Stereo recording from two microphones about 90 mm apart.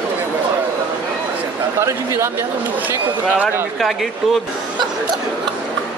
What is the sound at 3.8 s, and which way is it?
Speech, centre (ahead or behind).